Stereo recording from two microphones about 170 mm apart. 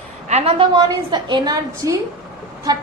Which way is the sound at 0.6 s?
25° right (ahead or behind).